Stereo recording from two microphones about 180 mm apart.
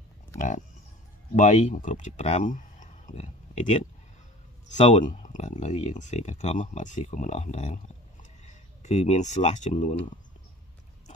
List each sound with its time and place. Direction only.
0.4 s livestock: 45° left (ahead or behind)
1.3 s speech: 45° left (ahead or behind)
4.6 s speech: 40° left (ahead or behind)